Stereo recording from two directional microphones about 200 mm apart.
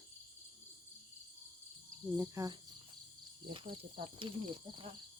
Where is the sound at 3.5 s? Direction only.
30° right (ahead or behind).